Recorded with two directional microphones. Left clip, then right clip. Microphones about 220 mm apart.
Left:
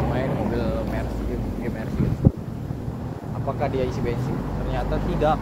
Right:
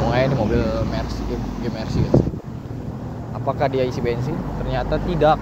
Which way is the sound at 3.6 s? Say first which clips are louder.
Right 5 dB; 50° right (ahead or behind).